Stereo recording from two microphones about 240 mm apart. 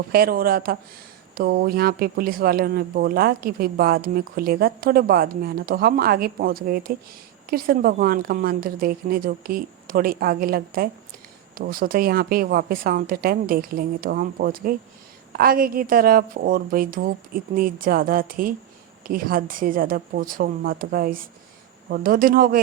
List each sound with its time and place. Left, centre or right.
0.1 s speech: right